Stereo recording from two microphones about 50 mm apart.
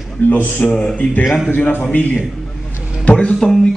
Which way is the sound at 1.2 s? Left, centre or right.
Centre.